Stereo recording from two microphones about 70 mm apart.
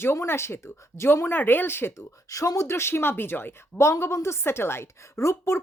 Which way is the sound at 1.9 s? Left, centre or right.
Left.